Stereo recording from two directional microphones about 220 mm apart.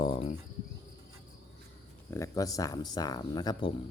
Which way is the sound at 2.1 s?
15° left (ahead or behind).